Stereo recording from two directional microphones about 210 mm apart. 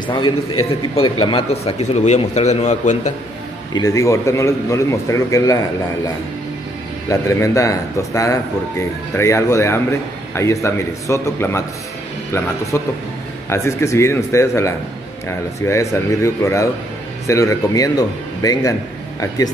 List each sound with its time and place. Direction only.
1.0 s a man's voice: 25° left (ahead or behind)
3.7 s a man's voice: 15° left (ahead or behind)
12.7 s a man's voice: 10° left (ahead or behind)